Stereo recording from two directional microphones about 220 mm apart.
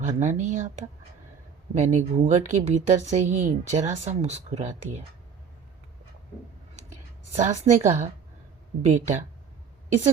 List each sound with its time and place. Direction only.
0.0 s speech: 35° right (ahead or behind)
7.3 s speech: 30° right (ahead or behind)